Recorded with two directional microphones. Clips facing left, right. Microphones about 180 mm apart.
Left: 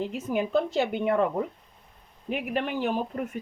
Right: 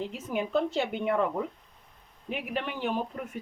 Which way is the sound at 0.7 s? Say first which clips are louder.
Left 3 dB; 45° left (ahead or behind).